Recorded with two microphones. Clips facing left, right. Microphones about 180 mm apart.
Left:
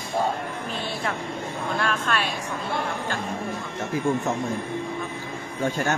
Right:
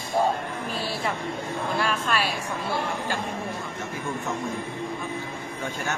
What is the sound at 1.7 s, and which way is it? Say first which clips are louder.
Speech: even; 5° right (ahead or behind).